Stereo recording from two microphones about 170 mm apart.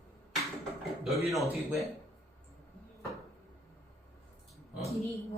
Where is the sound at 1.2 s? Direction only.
Centre (ahead or behind).